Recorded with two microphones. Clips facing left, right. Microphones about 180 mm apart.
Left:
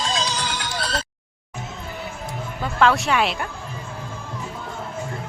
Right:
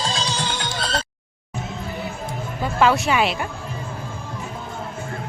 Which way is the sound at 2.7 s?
5° right (ahead or behind).